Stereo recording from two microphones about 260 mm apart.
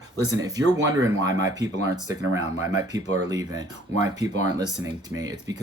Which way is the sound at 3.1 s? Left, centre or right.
Centre.